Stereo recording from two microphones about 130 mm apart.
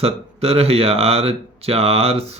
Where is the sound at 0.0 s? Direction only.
50° right (ahead or behind).